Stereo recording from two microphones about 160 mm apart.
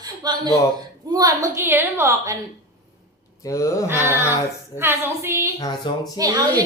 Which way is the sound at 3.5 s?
20° left (ahead or behind).